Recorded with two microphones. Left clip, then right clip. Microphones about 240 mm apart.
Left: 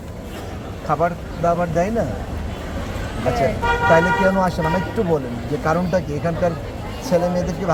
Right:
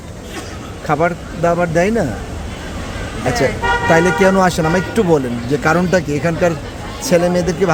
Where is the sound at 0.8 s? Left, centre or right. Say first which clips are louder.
Right 4 dB; right.